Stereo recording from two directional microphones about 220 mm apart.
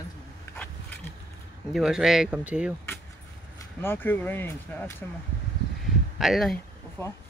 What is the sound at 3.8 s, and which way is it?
Speech, 10° left (ahead or behind).